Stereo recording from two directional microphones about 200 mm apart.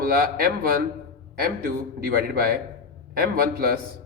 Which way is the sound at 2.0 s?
50° right (ahead or behind).